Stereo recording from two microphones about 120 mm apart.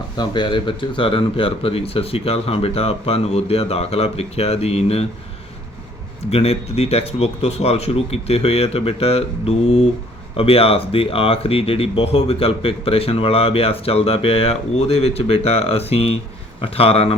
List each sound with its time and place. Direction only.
0.2 s speech: 40° left (ahead or behind); by 5.0 s 55° left (ahead or behind)
6.3 s speech: 55° left (ahead or behind)